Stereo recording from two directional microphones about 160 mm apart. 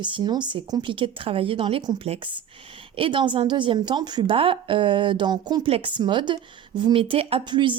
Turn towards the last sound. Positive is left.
turn(degrees=-30)  # may be behind; listen again after turning